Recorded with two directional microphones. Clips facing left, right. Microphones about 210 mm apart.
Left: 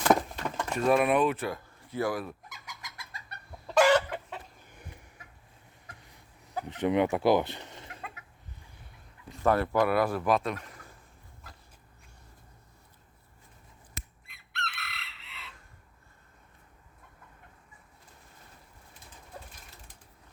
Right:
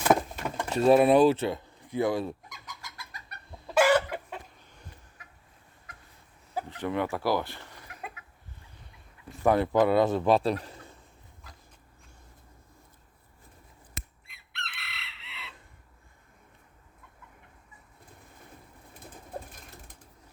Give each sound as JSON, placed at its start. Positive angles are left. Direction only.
{"t": 0.0, "sound": "a sound", "side_deg": -5}
{"t": 0.8, "sound": "speech", "side_deg": -30}
{"t": 2.8, "sound": "chicken", "side_deg": 25}
{"t": 3.8, "sound": "chicken", "side_deg": -5}
{"t": 4.6, "sound": "chicken", "side_deg": 10}
{"t": 6.7, "sound": "speech", "side_deg": 20}
{"t": 9.4, "sound": "speech", "side_deg": -15}
{"t": 14.8, "sound": "chicken", "side_deg": 45}
{"t": 18.9, "sound": "bird", "side_deg": -55}